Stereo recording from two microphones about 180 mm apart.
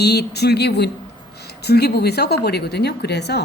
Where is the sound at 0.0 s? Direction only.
65° left (ahead or behind).